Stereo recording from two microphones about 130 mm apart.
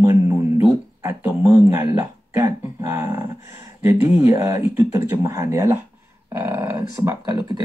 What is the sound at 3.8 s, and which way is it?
Speech, 25° right (ahead or behind).